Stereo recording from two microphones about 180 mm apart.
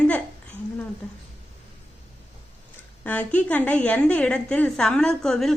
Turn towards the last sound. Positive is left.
turn(degrees=0)  # may be behind; listen again after turning